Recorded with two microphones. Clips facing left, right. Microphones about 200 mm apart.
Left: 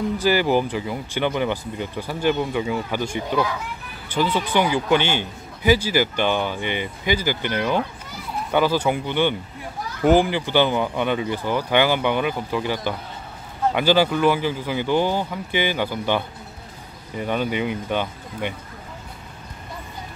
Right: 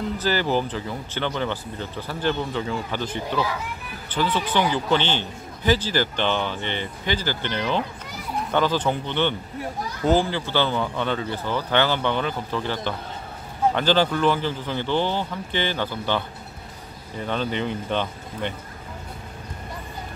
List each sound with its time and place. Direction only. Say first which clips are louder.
0.2 s a man's voice: left 4 dB; 10° left (ahead or behind)